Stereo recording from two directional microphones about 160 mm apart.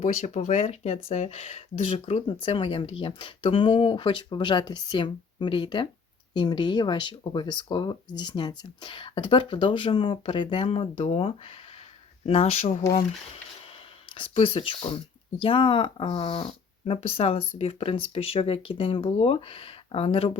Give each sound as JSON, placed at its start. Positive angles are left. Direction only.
{"t": 0.0, "sound": "speech", "side_deg": 45}